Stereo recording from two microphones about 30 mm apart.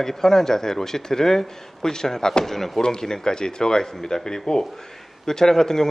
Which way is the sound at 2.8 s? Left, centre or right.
Left.